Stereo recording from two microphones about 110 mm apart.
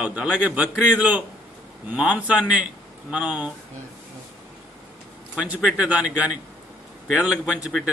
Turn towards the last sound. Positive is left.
turn(degrees=-5)  # may be behind; listen again after turning